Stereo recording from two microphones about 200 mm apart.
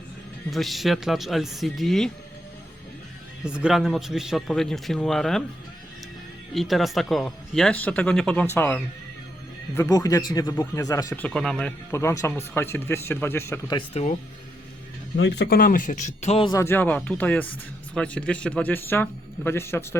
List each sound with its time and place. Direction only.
0.5 s speech: centre (ahead or behind)
3.4 s speech: 5° right (ahead or behind)
6.5 s speech: centre (ahead or behind); by 14.2 s 30° left (ahead or behind)
15.1 s speech: 55° left (ahead or behind); by 16.5 s 30° left (ahead or behind)
16.5 s speech: 15° left (ahead or behind)